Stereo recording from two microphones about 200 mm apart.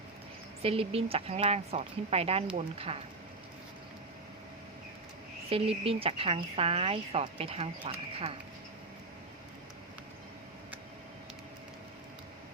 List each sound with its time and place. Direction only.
0.6 s a woman's voice: 30° right (ahead or behind)
5.5 s a woman's voice: 30° right (ahead or behind)